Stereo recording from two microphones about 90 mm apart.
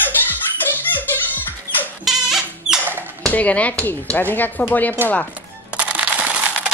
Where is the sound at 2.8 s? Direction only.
20° right (ahead or behind).